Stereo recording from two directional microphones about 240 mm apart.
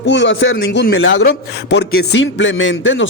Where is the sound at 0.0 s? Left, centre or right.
Left.